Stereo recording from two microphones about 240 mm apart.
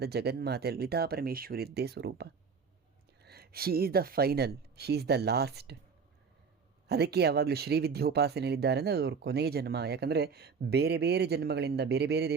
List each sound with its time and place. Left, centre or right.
0.0 s speech: right
3.2 s speech: right
6.8 s speech: right